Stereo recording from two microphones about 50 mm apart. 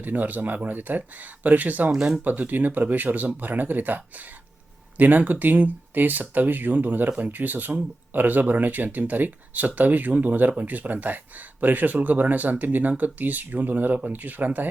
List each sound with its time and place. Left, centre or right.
0.0 s speech: right
1.9 s speech: centre
2.2 s speech: right